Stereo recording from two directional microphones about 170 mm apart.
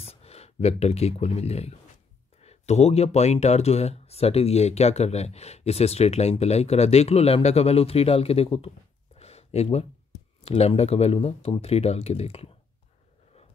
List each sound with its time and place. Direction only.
0.0 s speech: 35° left (ahead or behind)